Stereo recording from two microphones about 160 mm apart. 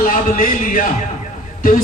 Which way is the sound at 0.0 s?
55° left (ahead or behind).